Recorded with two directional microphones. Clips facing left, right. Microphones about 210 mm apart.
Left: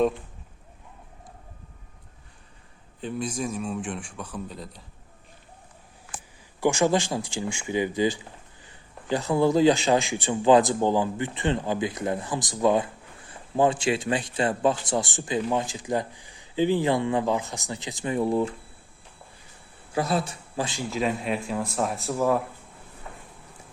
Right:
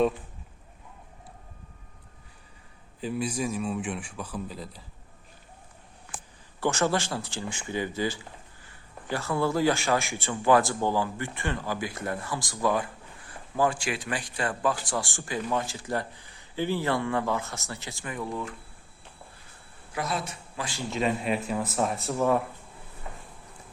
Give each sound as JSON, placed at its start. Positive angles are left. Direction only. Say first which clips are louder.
{"t": 3.0, "sound": "speech", "louder": "even", "side_deg": -5}
{"t": 6.6, "sound": "a man's voice", "louder": "left 4 dB", "side_deg": 15}
{"t": 19.9, "sound": "speech", "louder": "left 6 dB", "side_deg": 30}
{"t": 20.9, "sound": "speech", "louder": "right 1 dB", "side_deg": 0}